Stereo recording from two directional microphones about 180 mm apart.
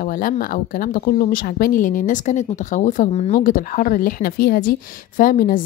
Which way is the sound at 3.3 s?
50° left (ahead or behind).